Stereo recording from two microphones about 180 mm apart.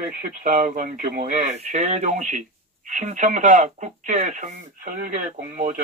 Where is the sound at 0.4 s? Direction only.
40° right (ahead or behind).